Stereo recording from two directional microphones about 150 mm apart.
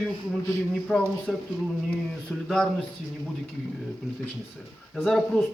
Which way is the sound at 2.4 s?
Centre (ahead or behind).